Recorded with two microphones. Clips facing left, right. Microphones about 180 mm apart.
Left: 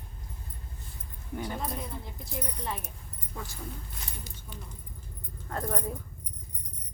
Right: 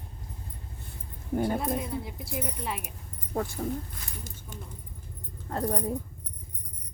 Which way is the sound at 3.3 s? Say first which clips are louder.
Right 11 dB; 55° right (ahead or behind).